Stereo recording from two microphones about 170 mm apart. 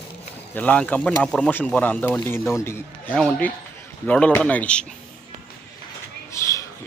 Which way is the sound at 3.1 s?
5° left (ahead or behind).